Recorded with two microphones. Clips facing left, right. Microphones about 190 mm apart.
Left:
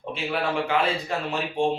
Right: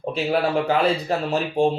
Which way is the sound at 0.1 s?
40° right (ahead or behind).